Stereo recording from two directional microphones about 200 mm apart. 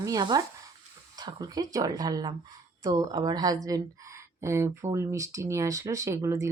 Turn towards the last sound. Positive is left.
turn(degrees=-15)  # may be behind; listen again after turning